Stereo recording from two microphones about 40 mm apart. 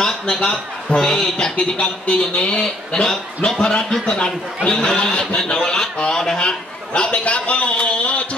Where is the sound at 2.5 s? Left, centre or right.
Left.